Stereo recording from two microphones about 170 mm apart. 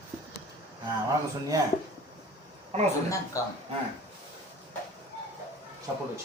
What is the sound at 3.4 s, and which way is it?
Speech, 20° left (ahead or behind).